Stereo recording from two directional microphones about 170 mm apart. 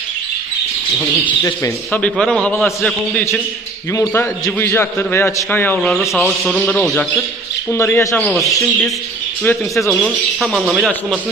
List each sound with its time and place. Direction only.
1.4 s a man's voice: 15° left (ahead or behind)
2.0 s speech: 5° left (ahead or behind)
3.9 s a man's voice: 15° left (ahead or behind)
9.4 s speech: 5° left (ahead or behind)